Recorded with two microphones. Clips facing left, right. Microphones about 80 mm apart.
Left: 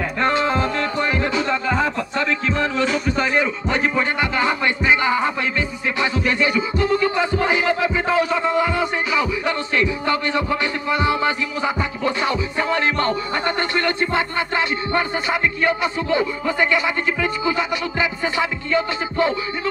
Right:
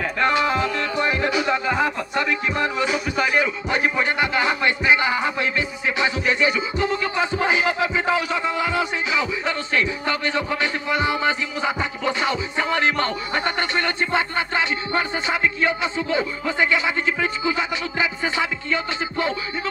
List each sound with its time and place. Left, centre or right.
0.2 s music: left
0.9 s music: centre
12.1 s music: right
13.3 s music: left
17.6 s music: right
18.4 s music: left